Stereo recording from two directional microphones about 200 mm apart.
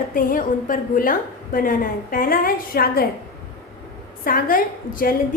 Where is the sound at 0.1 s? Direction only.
45° left (ahead or behind).